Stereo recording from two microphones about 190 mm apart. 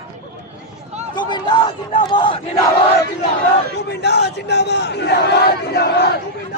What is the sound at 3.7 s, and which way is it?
Battle cry, 60° left (ahead or behind).